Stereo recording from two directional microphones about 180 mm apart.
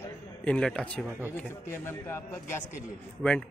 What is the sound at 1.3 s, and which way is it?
A man's voice, 10° left (ahead or behind).